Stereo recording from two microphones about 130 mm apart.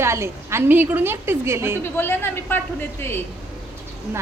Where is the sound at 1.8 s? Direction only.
15° left (ahead or behind).